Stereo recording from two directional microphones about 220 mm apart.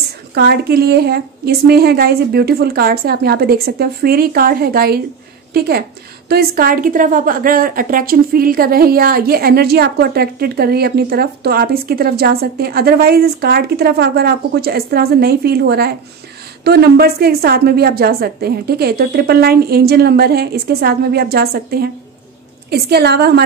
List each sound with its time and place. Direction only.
0.3 s a woman's voice: 45° right (ahead or behind)